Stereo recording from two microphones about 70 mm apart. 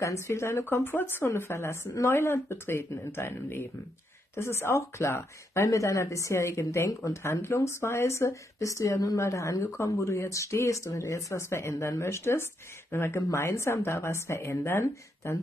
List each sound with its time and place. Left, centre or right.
0.0 s speech: left